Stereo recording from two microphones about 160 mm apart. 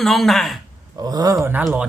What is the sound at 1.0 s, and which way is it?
Speech, 25° right (ahead or behind).